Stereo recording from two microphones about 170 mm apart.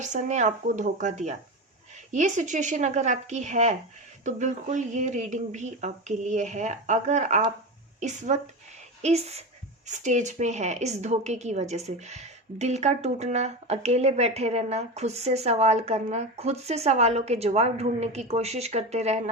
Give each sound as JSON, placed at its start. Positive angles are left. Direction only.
{"t": 0.0, "sound": "a woman's voice", "side_deg": -45}